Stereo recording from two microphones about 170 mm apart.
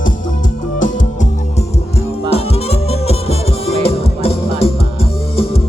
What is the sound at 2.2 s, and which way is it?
Music, 40° left (ahead or behind).